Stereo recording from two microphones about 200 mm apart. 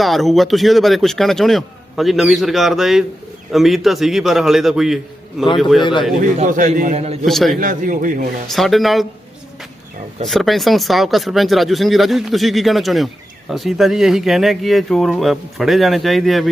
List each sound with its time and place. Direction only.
0.0 s a man's voice: centre (ahead or behind)
6.1 s a man's voice: 40° right (ahead or behind)
7.3 s a man's voice: centre (ahead or behind)
7.6 s a man's voice: 40° right (ahead or behind)
8.4 s a man's voice: centre (ahead or behind)
10.2 s a man's voice: centre (ahead or behind)